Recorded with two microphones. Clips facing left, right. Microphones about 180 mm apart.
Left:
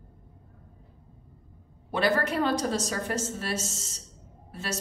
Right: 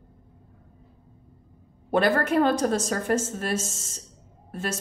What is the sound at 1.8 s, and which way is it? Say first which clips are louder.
A woman's voice: right 4 dB; 55° right (ahead or behind).